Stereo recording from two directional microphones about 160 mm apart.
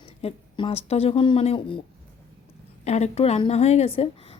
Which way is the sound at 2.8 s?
45° left (ahead or behind).